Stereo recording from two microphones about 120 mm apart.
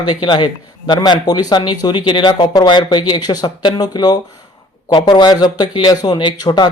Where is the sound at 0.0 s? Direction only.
35° left (ahead or behind).